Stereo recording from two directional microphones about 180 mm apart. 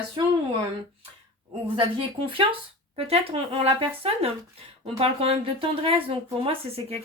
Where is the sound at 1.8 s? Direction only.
30° right (ahead or behind).